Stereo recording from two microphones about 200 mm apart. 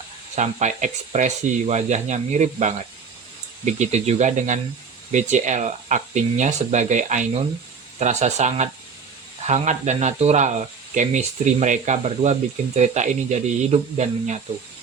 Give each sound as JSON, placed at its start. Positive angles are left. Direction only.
{"t": 0.3, "sound": "speech", "side_deg": -35}